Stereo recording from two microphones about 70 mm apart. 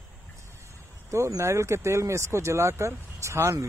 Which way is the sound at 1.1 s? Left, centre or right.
Right.